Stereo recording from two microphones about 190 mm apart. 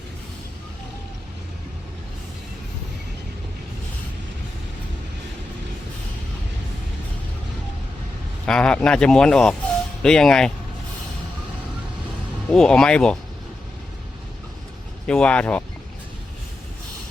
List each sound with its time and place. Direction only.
8.4 s speech: 5° left (ahead or behind)
12.5 s speech: 5° left (ahead or behind)
15.0 s speech: 5° left (ahead or behind)